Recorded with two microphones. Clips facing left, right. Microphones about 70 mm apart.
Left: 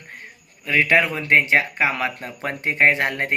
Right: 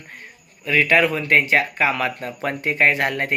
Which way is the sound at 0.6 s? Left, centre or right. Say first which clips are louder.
Right 1 dB; left.